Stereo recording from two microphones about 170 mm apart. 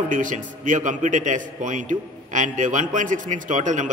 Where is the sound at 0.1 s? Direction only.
50° right (ahead or behind).